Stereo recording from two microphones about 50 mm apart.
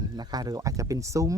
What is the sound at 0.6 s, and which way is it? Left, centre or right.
Speech, right.